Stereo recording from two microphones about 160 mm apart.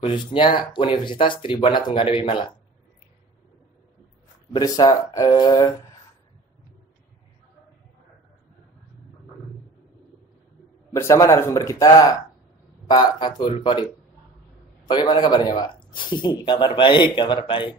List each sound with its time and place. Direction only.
0.0 s speech: 30° left (ahead or behind)
4.5 s speech: 25° left (ahead or behind)
10.9 s speech: 20° left (ahead or behind)
14.9 s speech: 30° left (ahead or behind)